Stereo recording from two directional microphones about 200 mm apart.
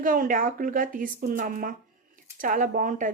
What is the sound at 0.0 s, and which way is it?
A woman's voice, 45° right (ahead or behind).